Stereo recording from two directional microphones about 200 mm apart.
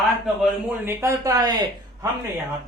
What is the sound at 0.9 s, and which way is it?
Speech, 15° right (ahead or behind).